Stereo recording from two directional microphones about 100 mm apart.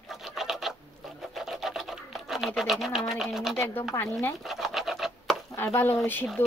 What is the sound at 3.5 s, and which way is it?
Speech, 20° left (ahead or behind).